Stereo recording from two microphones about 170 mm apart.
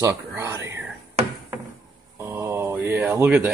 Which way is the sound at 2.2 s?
15° right (ahead or behind).